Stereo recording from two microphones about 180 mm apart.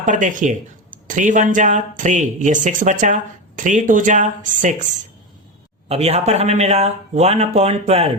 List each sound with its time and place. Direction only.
0.0 s speech: 45° right (ahead or behind)
5.9 s speech: 35° right (ahead or behind)